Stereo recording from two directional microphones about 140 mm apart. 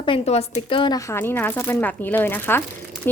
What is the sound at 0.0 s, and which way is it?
Speech, 45° left (ahead or behind).